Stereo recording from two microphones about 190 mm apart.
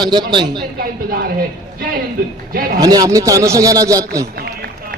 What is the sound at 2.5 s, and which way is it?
Speech, 50° right (ahead or behind).